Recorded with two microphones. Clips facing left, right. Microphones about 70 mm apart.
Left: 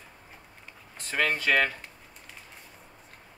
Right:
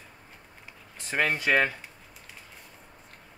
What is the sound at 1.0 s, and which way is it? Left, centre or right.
Speech, right.